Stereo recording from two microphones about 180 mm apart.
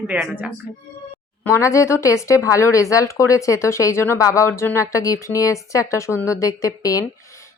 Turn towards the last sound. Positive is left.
turn(degrees=20)  # may be behind; listen again after turning